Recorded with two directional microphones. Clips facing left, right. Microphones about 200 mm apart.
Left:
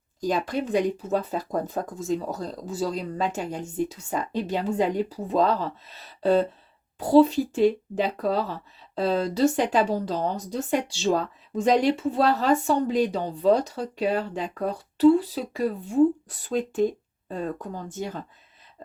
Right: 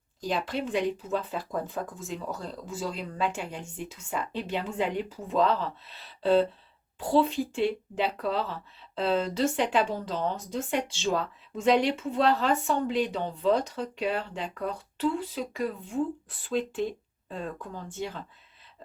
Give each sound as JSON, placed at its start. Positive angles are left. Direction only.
{"t": 0.2, "sound": "a woman's voice", "side_deg": 45}